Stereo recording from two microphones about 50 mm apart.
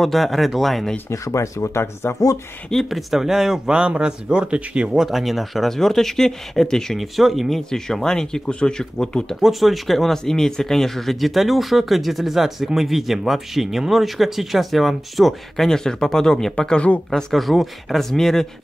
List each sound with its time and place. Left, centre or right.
0.0 s speech: centre
1.1 s speech: left
2.7 s speech: centre
3.7 s speech: centre
5.0 s speech: centre
9.4 s speech: centre
16.5 s speech: left
17.1 s speech: centre